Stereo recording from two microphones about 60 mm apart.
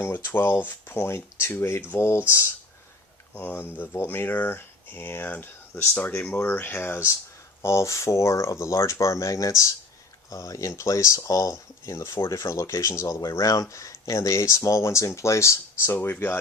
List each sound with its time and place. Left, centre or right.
0.0 s speech: left
3.3 s speech: left
6.3 s speech: left
7.6 s speech: left
15.9 s speech: left